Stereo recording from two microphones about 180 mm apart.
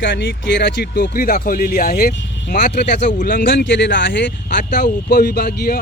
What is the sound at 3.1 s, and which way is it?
Speech, 50° left (ahead or behind).